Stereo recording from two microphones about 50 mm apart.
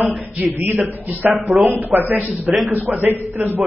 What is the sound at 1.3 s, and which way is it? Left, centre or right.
Speech, centre.